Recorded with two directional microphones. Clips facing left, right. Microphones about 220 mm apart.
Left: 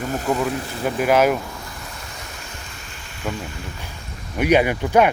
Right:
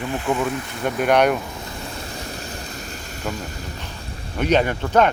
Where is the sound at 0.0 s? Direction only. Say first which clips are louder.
Left 1 dB; 40° left (ahead or behind).